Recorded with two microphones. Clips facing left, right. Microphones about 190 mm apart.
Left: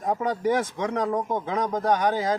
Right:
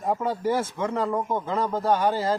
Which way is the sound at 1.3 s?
15° left (ahead or behind).